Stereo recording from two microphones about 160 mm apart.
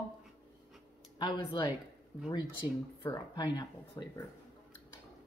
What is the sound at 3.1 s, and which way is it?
Speech, 25° left (ahead or behind).